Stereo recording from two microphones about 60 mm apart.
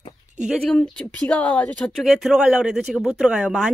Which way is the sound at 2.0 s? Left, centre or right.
Centre.